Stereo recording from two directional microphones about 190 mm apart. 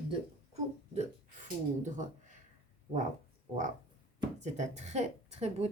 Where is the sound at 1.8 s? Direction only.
40° right (ahead or behind).